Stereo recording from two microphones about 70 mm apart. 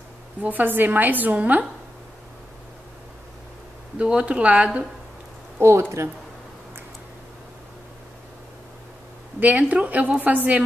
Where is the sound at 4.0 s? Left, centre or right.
Centre.